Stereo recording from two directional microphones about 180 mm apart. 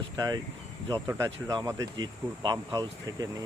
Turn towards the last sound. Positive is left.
turn(degrees=-20)  # may be behind; listen again after turning